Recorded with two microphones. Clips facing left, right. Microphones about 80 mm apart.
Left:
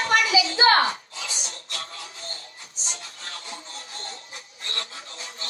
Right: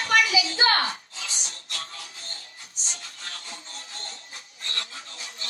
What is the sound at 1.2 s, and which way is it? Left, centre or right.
Music, left.